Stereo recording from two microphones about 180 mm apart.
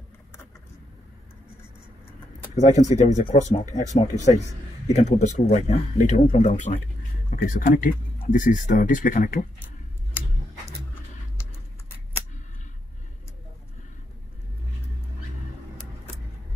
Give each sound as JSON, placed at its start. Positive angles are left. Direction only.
{"t": 2.5, "sound": "speech", "side_deg": 40}